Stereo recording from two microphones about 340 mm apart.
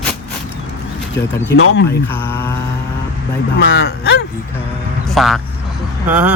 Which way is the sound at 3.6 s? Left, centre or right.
Left.